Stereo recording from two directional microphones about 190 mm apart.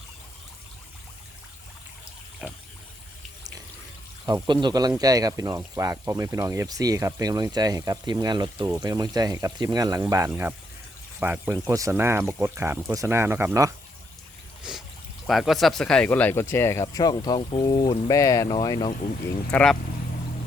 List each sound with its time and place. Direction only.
2.4 s speech: centre (ahead or behind)
4.4 s speech: 25° right (ahead or behind)
14.6 s a sound: 5° right (ahead or behind)
15.3 s speech: centre (ahead or behind); by 18.9 s 20° left (ahead or behind)
19.5 s speech: 5° left (ahead or behind)